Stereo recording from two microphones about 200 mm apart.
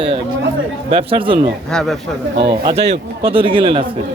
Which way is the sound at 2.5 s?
25° right (ahead or behind).